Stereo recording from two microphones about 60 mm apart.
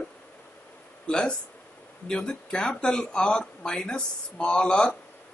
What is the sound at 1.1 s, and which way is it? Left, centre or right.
A man's voice, centre.